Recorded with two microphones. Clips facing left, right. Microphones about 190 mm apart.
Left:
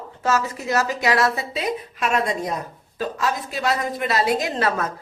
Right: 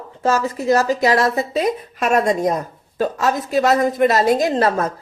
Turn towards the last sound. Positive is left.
turn(degrees=-40)  # may be behind; listen again after turning